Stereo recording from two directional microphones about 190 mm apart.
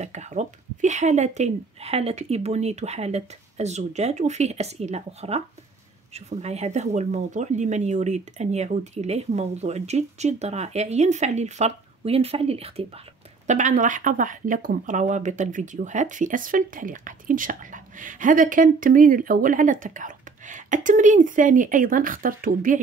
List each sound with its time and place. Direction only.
0.0 s speech: 35° right (ahead or behind)